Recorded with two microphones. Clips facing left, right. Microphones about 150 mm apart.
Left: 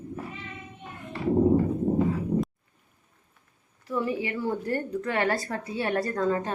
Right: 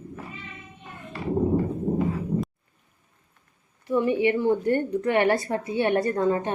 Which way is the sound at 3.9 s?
25° right (ahead or behind).